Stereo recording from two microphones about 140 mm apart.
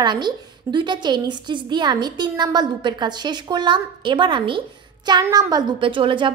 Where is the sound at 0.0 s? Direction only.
30° right (ahead or behind).